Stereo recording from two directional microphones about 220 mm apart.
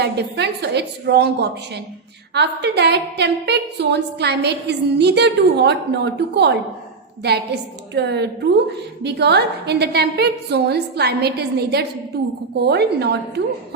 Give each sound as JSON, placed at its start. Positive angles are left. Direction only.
{"t": 0.0, "sound": "a woman's voice", "side_deg": -50}